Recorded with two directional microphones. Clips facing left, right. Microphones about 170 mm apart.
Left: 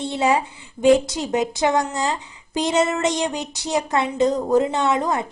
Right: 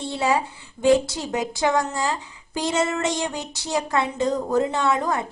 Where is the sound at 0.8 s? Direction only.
20° left (ahead or behind).